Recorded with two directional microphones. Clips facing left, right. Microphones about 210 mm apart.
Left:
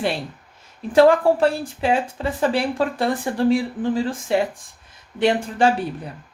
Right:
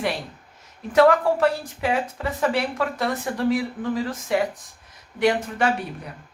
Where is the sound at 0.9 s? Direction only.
30° left (ahead or behind).